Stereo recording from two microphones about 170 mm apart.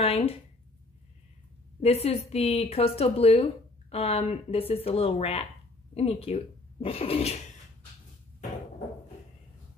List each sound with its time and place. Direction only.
0.0 s a woman's voice: 35° left (ahead or behind)
1.8 s a woman's voice: 35° left (ahead or behind)